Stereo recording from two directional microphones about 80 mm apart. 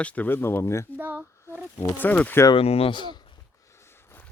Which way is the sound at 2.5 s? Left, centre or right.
Left.